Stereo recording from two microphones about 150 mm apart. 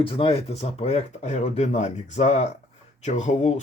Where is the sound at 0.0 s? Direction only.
35° left (ahead or behind).